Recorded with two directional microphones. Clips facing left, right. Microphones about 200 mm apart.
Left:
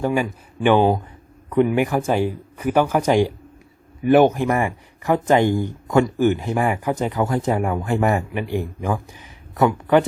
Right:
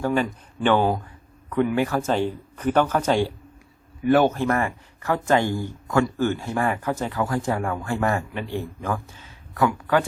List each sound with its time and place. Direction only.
0.0 s speech: 10° left (ahead or behind)